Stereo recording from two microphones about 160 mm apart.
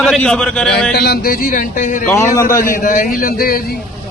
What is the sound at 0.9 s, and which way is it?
Speech, 75° left (ahead or behind).